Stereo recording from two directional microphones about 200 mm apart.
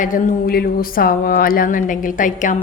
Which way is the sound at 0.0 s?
45° left (ahead or behind).